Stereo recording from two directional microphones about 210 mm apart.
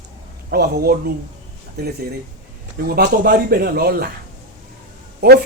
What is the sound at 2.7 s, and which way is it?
Speech, 45° right (ahead or behind).